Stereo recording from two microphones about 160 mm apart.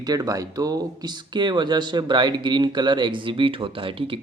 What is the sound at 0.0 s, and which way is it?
Speech, 25° right (ahead or behind).